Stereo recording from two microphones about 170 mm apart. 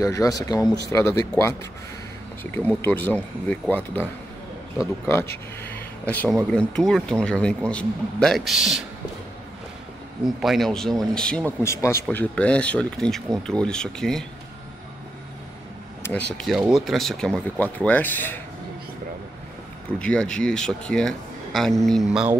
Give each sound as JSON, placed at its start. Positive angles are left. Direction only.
{"t": 0.0, "sound": "speech", "side_deg": 20}
{"t": 2.8, "sound": "speech", "side_deg": 10}
{"t": 5.6, "sound": "speech", "side_deg": 10}
{"t": 10.2, "sound": "speech", "side_deg": 0}
{"t": 11.6, "sound": "speech", "side_deg": 15}
{"t": 16.0, "sound": "speech", "side_deg": 5}
{"t": 20.0, "sound": "speech", "side_deg": 5}